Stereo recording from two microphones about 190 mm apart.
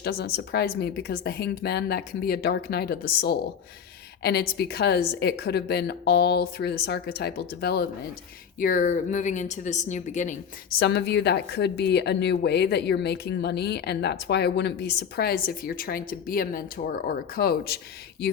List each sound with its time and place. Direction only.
0.0 s a woman's voice: 55° left (ahead or behind)
8.5 s a woman's voice: 45° left (ahead or behind)
10.8 s a woman's voice: 60° left (ahead or behind)